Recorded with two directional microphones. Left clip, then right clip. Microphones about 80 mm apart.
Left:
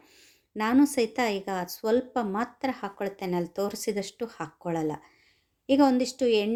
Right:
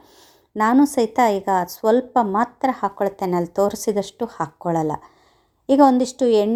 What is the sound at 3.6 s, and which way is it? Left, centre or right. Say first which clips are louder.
Speech: right 13 dB; left.